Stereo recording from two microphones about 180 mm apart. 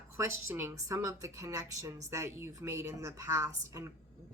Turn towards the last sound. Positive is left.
turn(degrees=-15)  # may be behind; listen again after turning